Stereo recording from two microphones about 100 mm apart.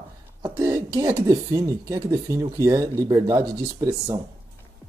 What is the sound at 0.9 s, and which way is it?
Speech, 30° right (ahead or behind).